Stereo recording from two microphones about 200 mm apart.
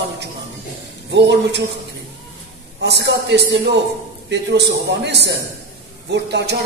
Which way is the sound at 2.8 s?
60° right (ahead or behind).